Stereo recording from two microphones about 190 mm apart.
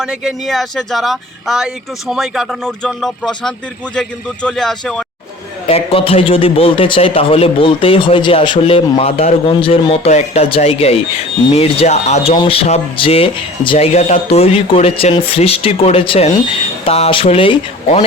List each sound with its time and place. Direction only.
0.0 s speech: 5° right (ahead or behind)
5.6 s a man's voice: 30° left (ahead or behind)